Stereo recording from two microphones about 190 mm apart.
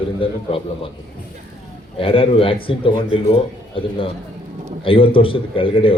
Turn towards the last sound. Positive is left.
turn(degrees=30)  # may be behind; listen again after turning